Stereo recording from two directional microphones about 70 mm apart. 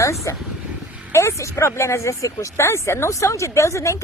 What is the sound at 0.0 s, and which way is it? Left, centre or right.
Speech, left.